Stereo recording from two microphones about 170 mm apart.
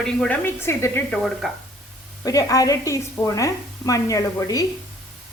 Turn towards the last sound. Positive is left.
turn(degrees=20)  # may be behind; listen again after turning